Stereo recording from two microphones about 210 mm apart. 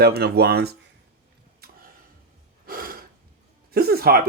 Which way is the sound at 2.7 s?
45° right (ahead or behind).